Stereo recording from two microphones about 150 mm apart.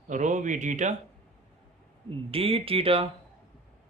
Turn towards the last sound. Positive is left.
turn(degrees=-40)  # may be behind; listen again after turning